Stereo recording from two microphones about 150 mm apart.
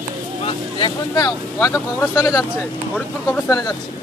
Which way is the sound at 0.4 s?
35° left (ahead or behind).